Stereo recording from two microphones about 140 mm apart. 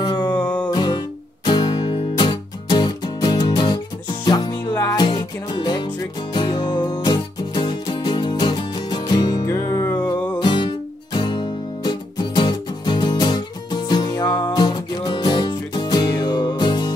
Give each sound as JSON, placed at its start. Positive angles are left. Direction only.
{"t": 0.0, "sound": "music", "side_deg": 30}
{"t": 0.3, "sound": "music", "side_deg": 10}
{"t": 0.7, "sound": "music", "side_deg": 30}
{"t": 4.6, "sound": "music", "side_deg": 15}
{"t": 4.9, "sound": "music", "side_deg": 30}
{"t": 10.4, "sound": "music", "side_deg": 35}